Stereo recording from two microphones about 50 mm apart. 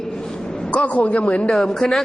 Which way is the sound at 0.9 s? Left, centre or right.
Left.